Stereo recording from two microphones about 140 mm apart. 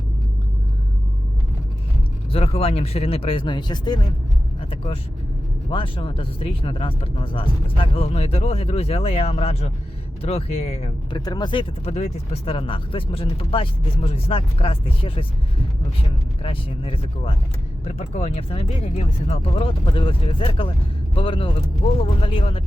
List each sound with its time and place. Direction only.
2.3 s speech: 45° left (ahead or behind)
5.7 s speech: 40° left (ahead or behind)
11.1 s speech: 30° left (ahead or behind)
11.9 s speech: 50° left (ahead or behind)
16.4 s speech: 40° left (ahead or behind)